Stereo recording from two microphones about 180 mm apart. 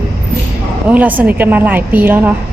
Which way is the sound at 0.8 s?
10° right (ahead or behind).